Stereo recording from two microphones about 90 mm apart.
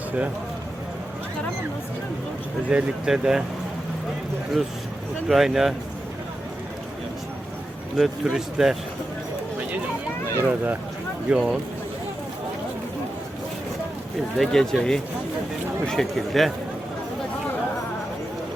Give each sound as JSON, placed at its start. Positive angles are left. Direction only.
{"t": 2.6, "sound": "speech", "side_deg": -10}
{"t": 5.3, "sound": "speech", "side_deg": -5}
{"t": 7.9, "sound": "speech", "side_deg": -5}
{"t": 10.4, "sound": "speech", "side_deg": -20}
{"t": 11.3, "sound": "speech", "side_deg": -5}
{"t": 14.3, "sound": "speech", "side_deg": 5}